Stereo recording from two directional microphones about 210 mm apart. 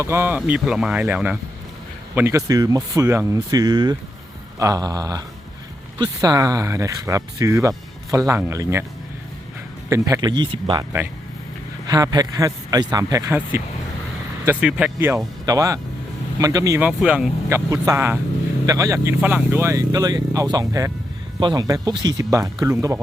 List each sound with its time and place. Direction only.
0.0 s speech: 10° right (ahead or behind)
9.9 s speech: 15° right (ahead or behind)
11.9 s speech: 20° right (ahead or behind)